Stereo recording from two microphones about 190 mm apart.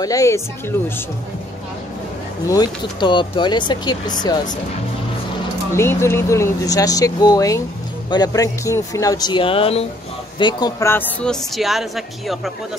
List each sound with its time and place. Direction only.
0.0 s speech: 15° left (ahead or behind)
2.4 s speech: 20° left (ahead or behind)
5.8 s speech: 15° left (ahead or behind); by 9.8 s 30° left (ahead or behind)
10.4 s a woman's voice: 20° left (ahead or behind); by 12.5 s centre (ahead or behind)